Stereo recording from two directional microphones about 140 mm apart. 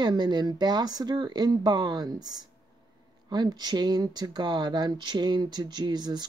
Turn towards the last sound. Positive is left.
turn(degrees=-30)  # may be behind; listen again after turning